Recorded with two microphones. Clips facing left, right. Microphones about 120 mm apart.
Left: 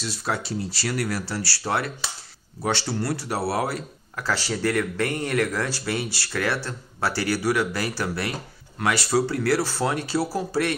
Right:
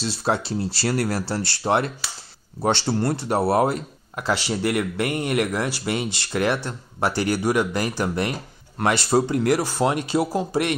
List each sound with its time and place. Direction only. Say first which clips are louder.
0.0 s speech: right 5 dB; 30° right (ahead or behind)